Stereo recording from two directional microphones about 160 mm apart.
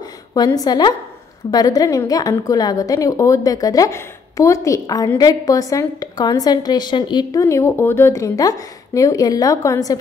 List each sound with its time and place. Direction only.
0.3 s a woman's voice: 25° left (ahead or behind)